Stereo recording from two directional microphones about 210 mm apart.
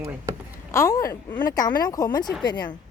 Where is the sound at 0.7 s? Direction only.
15° left (ahead or behind).